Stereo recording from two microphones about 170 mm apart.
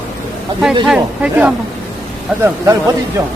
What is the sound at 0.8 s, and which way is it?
Speech, 5° right (ahead or behind).